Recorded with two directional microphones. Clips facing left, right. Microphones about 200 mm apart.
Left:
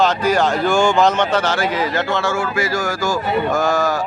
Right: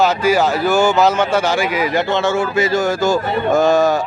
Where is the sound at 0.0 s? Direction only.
10° right (ahead or behind).